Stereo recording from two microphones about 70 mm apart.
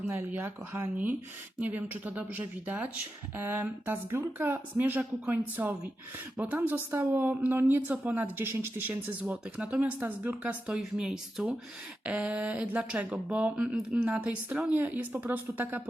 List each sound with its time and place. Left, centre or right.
0.3 s a woman's voice: right
9.3 s a woman's voice: centre
10.7 s a woman's voice: centre